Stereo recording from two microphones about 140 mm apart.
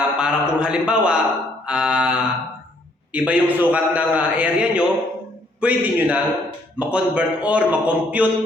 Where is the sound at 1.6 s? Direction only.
5° right (ahead or behind).